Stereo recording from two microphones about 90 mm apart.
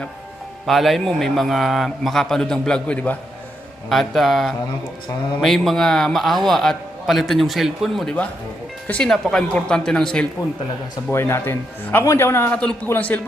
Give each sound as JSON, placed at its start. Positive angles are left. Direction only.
{"t": 0.6, "sound": "a man's voice", "side_deg": 0}
{"t": 3.8, "sound": "a man's voice", "side_deg": 0}
{"t": 11.1, "sound": "a man's voice", "side_deg": 30}
{"t": 12.5, "sound": "a man's voice", "side_deg": 15}